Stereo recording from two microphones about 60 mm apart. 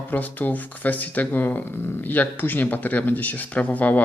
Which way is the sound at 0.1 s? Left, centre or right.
Left.